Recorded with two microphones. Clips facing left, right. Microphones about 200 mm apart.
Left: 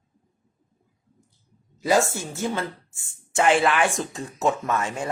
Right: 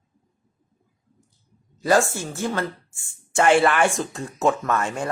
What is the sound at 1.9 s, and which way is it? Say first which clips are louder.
Speech: right 2 dB; 20° left (ahead or behind).